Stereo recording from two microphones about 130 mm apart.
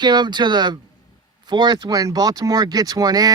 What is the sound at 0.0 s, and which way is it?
Speech, 35° right (ahead or behind).